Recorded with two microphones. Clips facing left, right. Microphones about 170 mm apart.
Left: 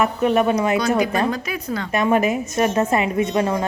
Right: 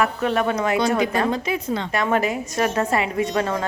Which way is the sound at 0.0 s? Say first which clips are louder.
Left 3 dB; 20° left (ahead or behind).